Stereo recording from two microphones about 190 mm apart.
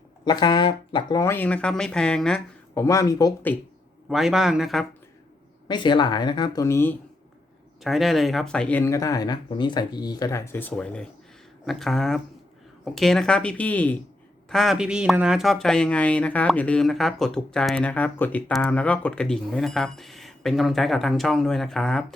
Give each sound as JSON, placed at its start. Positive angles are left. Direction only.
{"t": 0.3, "sound": "speech", "side_deg": 25}
{"t": 2.7, "sound": "speech", "side_deg": 15}
{"t": 4.1, "sound": "speech", "side_deg": 0}
{"t": 5.6, "sound": "speech", "side_deg": 25}
{"t": 7.9, "sound": "speech", "side_deg": 0}